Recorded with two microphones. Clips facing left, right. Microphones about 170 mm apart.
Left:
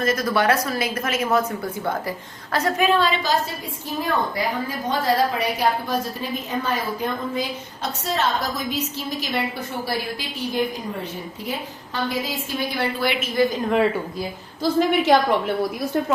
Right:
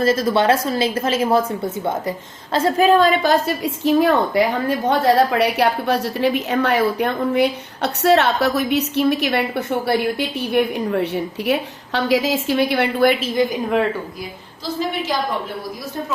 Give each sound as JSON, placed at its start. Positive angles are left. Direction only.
{"t": 0.0, "sound": "a woman's voice", "side_deg": -30}
{"t": 11.9, "sound": "a woman's voice", "side_deg": -90}
{"t": 13.3, "sound": "speech", "side_deg": -20}